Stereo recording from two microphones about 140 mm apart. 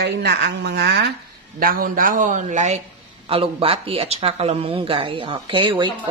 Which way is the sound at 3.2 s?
40° right (ahead or behind).